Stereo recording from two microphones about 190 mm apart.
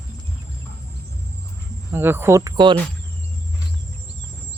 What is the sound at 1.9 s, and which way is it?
Speech, 10° right (ahead or behind).